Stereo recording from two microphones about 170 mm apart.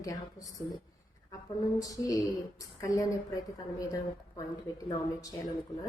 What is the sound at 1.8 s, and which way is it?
Speech, 20° left (ahead or behind).